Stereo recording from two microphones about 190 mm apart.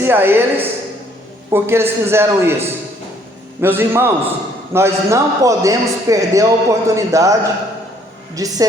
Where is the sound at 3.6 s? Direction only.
10° right (ahead or behind).